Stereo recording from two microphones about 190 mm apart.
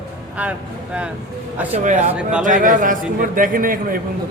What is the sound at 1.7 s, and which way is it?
A man's voice, 40° right (ahead or behind).